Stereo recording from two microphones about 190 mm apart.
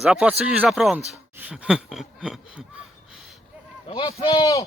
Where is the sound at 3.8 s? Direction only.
25° left (ahead or behind).